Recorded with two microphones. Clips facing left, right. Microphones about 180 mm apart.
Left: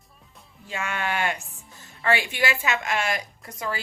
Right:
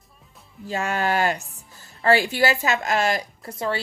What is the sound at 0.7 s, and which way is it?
Speech, 40° right (ahead or behind).